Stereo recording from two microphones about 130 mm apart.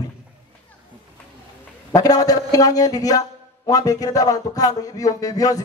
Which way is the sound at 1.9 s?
25° left (ahead or behind).